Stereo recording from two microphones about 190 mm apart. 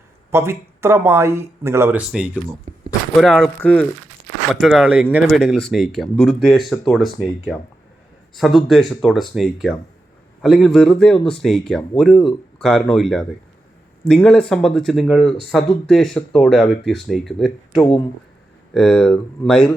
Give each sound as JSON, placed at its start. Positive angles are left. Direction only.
{"t": 0.3, "sound": "speech", "side_deg": -15}
{"t": 2.7, "sound": "speech", "side_deg": -35}
{"t": 3.2, "sound": "speech", "side_deg": 0}
{"t": 8.4, "sound": "speech", "side_deg": 0}
{"t": 17.7, "sound": "speech", "side_deg": 30}
{"t": 18.7, "sound": "speech", "side_deg": 0}